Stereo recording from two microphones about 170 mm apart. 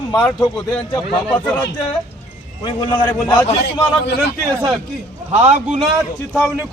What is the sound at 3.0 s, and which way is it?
Speech, 10° left (ahead or behind).